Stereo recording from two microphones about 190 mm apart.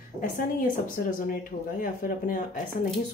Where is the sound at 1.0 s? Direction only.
55° left (ahead or behind).